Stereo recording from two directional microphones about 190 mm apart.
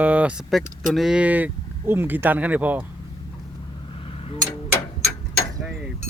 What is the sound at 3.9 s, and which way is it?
Tick-tock, 30° left (ahead or behind).